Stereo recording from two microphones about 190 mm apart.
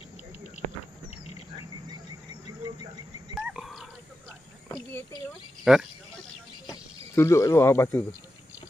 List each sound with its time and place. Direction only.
2.6 s insect: 20° right (ahead or behind)
3.3 s a sound: centre (ahead or behind)
5.6 s speech: centre (ahead or behind)
6.6 s speech: 15° left (ahead or behind)